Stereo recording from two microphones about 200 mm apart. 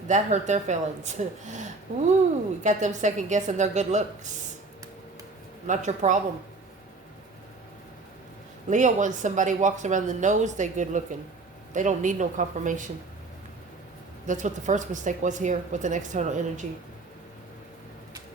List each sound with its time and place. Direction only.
0.1 s a woman's voice: 35° right (ahead or behind)
2.6 s a woman's voice: 35° right (ahead or behind)
5.6 s a woman's voice: 35° right (ahead or behind)
8.7 s a woman's voice: 40° right (ahead or behind)
14.3 s a woman's voice: 40° right (ahead or behind)